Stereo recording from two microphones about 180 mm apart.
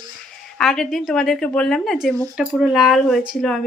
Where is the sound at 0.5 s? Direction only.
Centre (ahead or behind).